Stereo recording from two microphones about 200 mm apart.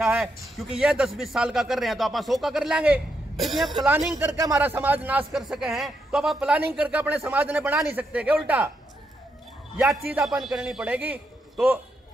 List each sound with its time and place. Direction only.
0.0 s speech: 5° right (ahead or behind)
9.8 s speech: 5° right (ahead or behind)